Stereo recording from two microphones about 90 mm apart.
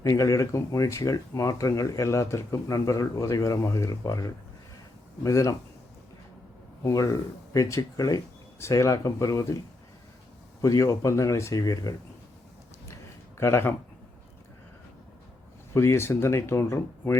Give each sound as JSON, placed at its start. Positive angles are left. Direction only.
{"t": 0.0, "sound": "speech", "side_deg": 40}
{"t": 6.8, "sound": "speech", "side_deg": 40}
{"t": 10.6, "sound": "speech", "side_deg": 40}
{"t": 13.4, "sound": "speech", "side_deg": 30}
{"t": 15.7, "sound": "speech", "side_deg": 30}